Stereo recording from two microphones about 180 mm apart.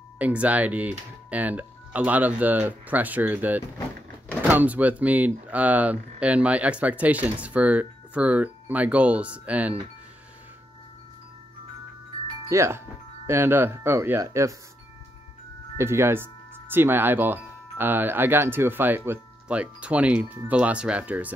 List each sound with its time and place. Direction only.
0.2 s speech: 10° right (ahead or behind)
12.4 s speech: 15° right (ahead or behind)
15.8 s speech: 15° right (ahead or behind)